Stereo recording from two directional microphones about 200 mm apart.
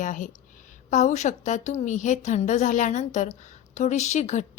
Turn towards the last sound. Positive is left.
turn(degrees=35)  # may be behind; listen again after turning